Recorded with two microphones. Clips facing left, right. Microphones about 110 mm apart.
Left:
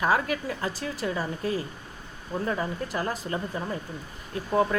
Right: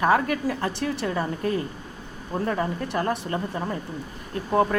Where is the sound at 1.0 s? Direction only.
50° right (ahead or behind).